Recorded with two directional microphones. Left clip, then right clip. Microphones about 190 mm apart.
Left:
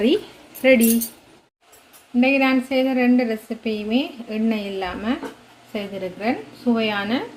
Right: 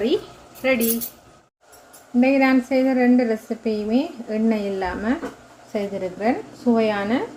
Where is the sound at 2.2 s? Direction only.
10° right (ahead or behind).